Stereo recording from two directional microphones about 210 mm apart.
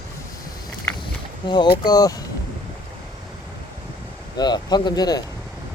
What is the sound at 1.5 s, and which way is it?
Speech, 20° left (ahead or behind).